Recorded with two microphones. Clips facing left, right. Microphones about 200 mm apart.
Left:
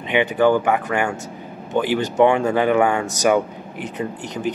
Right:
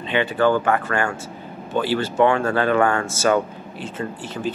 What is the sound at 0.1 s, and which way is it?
Speech, 15° left (ahead or behind).